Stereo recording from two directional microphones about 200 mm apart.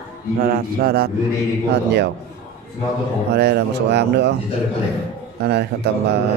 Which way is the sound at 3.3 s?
55° right (ahead or behind).